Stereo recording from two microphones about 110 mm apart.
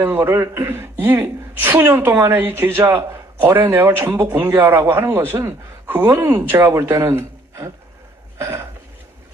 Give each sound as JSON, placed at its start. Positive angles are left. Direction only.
{"t": 0.0, "sound": "a man's voice", "side_deg": -25}
{"t": 8.4, "sound": "throat clearing", "side_deg": -25}